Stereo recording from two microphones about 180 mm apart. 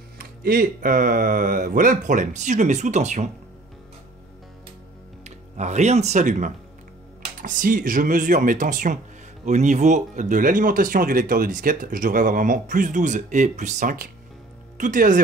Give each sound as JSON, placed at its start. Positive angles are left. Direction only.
{"t": 0.2, "sound": "speech", "side_deg": -55}
{"t": 5.2, "sound": "speech", "side_deg": -40}